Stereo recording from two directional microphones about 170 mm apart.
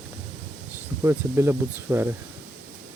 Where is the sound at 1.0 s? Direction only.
15° right (ahead or behind).